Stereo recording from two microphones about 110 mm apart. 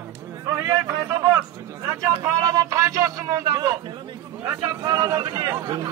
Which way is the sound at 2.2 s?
30° right (ahead or behind).